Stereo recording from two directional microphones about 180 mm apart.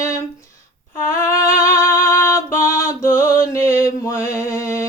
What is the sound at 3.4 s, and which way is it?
Mantra, 15° left (ahead or behind).